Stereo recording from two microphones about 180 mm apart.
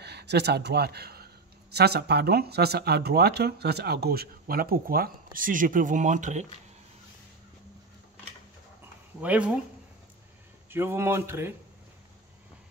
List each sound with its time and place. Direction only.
0.0 s speech: 65° right (ahead or behind); by 6.4 s 45° right (ahead or behind)
9.2 s speech: 10° right (ahead or behind)
10.7 s speech: 15° right (ahead or behind)